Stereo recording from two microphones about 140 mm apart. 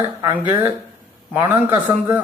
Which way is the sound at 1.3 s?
15° right (ahead or behind).